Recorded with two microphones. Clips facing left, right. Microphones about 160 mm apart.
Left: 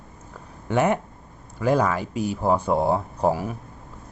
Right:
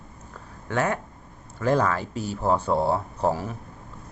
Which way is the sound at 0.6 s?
15° left (ahead or behind).